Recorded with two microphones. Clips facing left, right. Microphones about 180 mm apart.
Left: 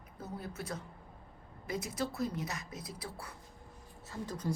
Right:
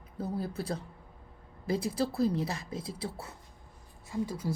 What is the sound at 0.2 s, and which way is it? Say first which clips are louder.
A woman's voice: right 8 dB; 30° right (ahead or behind).